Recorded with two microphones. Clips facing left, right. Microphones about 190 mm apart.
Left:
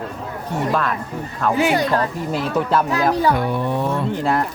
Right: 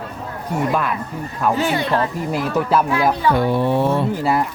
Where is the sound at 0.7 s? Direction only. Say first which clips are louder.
Left 2 dB; 10° right (ahead or behind).